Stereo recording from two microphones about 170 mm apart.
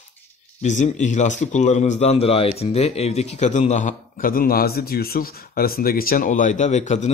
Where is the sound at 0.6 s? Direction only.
45° left (ahead or behind).